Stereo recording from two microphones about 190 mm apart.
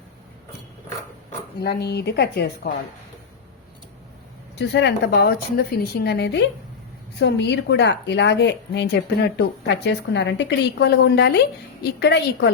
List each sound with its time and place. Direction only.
1.6 s a woman's voice: 60° left (ahead or behind)
4.5 s a woman's voice: 65° left (ahead or behind)